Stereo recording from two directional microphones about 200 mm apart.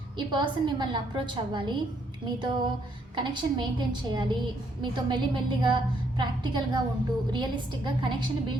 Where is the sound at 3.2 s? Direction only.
20° right (ahead or behind).